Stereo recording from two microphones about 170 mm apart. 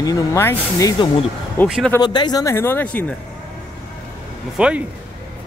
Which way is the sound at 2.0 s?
25° left (ahead or behind).